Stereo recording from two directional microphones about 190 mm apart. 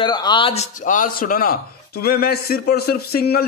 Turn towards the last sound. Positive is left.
turn(degrees=55)  # may be behind; listen again after turning